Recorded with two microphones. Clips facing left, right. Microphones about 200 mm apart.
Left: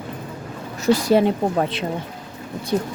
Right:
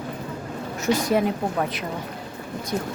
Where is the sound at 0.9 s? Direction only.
30° left (ahead or behind).